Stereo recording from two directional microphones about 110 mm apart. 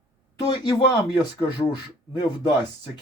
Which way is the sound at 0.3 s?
40° left (ahead or behind).